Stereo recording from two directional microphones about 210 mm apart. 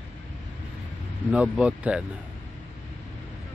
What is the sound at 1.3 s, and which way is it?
Speech, 5° right (ahead or behind).